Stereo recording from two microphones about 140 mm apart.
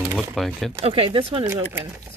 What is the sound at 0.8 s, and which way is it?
Speech, 45° right (ahead or behind).